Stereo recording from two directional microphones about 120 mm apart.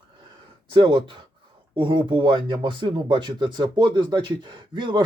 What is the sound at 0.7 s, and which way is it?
Speech, 45° right (ahead or behind).